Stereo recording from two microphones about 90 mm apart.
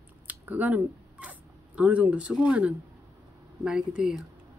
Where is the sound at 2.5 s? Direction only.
15° right (ahead or behind).